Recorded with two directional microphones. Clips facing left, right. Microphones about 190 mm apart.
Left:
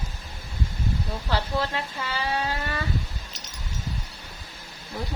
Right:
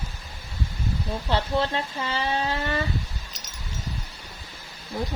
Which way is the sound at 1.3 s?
25° right (ahead or behind).